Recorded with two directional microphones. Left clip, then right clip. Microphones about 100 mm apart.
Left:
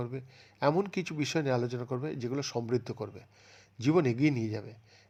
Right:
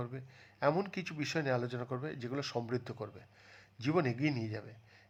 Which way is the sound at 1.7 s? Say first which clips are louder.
Left 4 dB; 15° left (ahead or behind).